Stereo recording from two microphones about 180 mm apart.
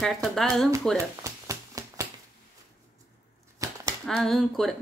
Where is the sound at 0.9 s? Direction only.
15° right (ahead or behind).